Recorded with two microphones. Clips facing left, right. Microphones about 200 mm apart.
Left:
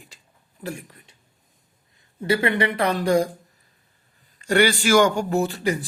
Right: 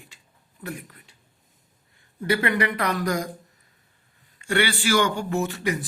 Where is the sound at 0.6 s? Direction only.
30° left (ahead or behind).